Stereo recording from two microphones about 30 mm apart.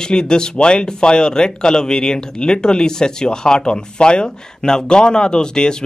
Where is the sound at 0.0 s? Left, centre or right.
Left.